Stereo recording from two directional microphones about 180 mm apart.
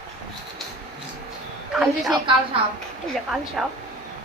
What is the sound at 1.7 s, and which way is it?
Speech, 5° right (ahead or behind).